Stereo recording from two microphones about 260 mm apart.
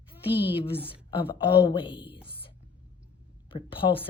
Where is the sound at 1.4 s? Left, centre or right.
Centre.